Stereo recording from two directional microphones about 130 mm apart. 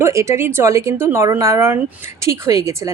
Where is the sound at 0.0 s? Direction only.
25° right (ahead or behind).